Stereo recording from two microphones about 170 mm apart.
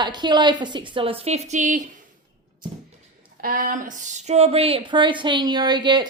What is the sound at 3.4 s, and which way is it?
Speech, 55° right (ahead or behind).